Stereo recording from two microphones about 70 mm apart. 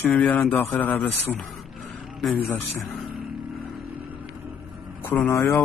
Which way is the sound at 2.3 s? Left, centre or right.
Left.